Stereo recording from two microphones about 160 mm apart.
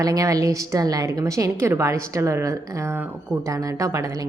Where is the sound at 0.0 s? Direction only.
20° right (ahead or behind).